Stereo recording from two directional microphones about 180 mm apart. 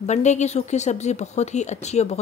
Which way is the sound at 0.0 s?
40° left (ahead or behind).